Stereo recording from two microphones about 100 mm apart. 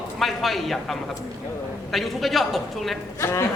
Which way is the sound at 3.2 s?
25° left (ahead or behind).